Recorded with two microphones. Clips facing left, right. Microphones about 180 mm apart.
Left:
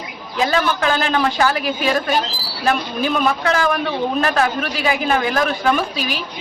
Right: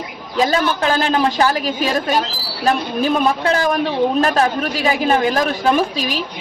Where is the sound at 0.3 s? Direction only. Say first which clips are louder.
Right 2 dB; 35° right (ahead or behind).